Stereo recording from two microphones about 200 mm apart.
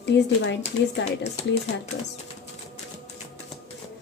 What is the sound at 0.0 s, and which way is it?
Speech, 60° left (ahead or behind).